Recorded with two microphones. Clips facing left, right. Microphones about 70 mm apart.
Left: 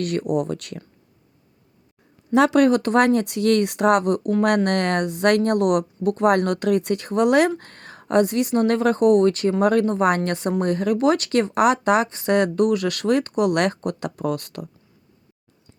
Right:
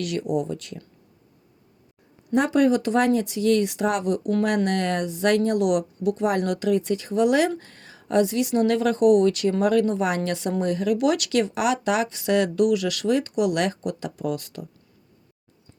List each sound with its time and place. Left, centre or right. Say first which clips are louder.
0.0 s speech: left 3 dB; left
2.3 s speech: left 4 dB; left